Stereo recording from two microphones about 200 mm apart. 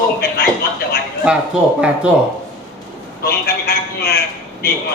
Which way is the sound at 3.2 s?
50° left (ahead or behind).